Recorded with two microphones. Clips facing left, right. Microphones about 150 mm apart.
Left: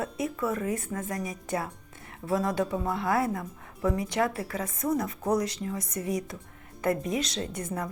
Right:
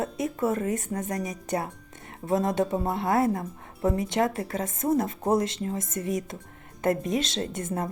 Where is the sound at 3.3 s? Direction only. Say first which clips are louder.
Right 3 dB; 40° right (ahead or behind).